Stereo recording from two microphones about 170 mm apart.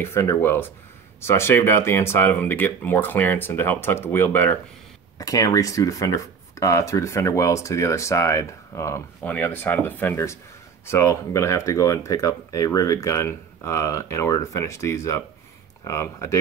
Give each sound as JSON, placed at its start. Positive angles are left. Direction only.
{"t": 0.0, "sound": "speech", "side_deg": 15}